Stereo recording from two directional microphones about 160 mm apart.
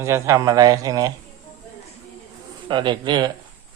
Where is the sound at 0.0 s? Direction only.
20° right (ahead or behind).